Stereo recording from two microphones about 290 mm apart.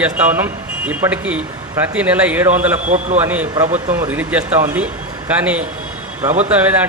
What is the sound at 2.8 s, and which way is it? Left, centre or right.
Speech, right.